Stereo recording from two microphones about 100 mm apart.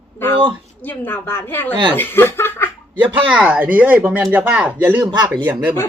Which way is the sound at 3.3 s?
15° right (ahead or behind).